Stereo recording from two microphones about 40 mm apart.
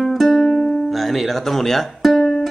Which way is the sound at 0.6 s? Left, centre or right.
Centre.